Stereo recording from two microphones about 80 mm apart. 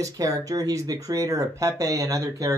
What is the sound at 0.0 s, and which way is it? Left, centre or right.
Speech, right.